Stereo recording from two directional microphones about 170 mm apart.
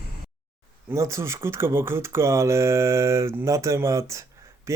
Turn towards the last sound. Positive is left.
turn(degrees=-15)  # may be behind; listen again after turning